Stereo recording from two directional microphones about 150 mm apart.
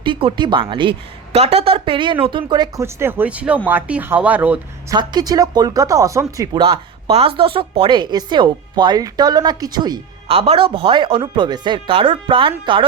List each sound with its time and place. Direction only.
0.0 s speech: 35° right (ahead or behind)
2.8 s speech: 15° right (ahead or behind)
4.9 s speech: 25° right (ahead or behind)
6.6 s speech: 40° right (ahead or behind)
10.2 s speech: 40° right (ahead or behind)